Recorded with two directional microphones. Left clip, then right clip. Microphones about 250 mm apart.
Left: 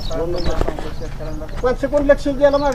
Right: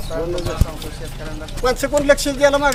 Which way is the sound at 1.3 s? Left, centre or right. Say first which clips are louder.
Even; centre.